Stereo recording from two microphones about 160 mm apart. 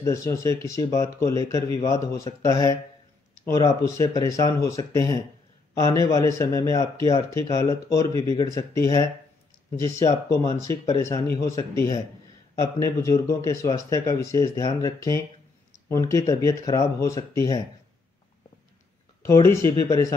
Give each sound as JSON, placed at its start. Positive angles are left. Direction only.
{"t": 0.0, "sound": "speech", "side_deg": 20}
{"t": 3.8, "sound": "speech", "side_deg": 20}
{"t": 19.2, "sound": "speech", "side_deg": 15}